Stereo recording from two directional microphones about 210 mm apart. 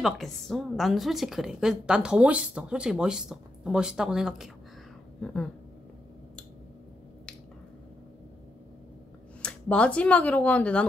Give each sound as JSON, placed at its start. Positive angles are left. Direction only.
{"t": 0.0, "sound": "a woman's voice", "side_deg": 0}
{"t": 9.4, "sound": "speech", "side_deg": 5}